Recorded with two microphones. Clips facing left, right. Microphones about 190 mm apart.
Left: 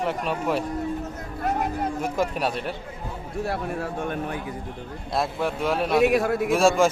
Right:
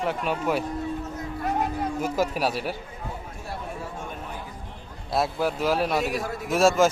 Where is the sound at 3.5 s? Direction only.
65° left (ahead or behind).